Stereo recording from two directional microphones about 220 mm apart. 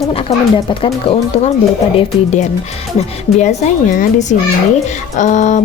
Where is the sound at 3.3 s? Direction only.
30° left (ahead or behind).